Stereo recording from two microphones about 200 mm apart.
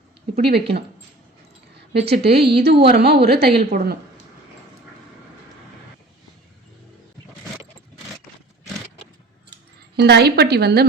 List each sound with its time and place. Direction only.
0.3 s a woman's voice: 55° right (ahead or behind)
1.9 s a woman's voice: 55° right (ahead or behind)
2.4 s a woman's voice: 25° right (ahead or behind)
2.9 s a woman's voice: 50° right (ahead or behind)
9.9 s speech: 55° right (ahead or behind)